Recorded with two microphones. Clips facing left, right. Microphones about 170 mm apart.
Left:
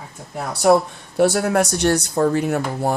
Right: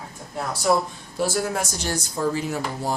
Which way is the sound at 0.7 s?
60° left (ahead or behind).